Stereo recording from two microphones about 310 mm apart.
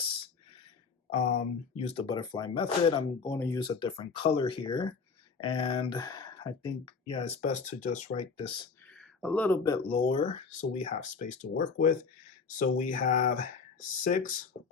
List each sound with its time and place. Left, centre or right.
1.1 s speech: centre
8.9 s speech: centre; by 14.2 s left
14.5 s beatboxing: left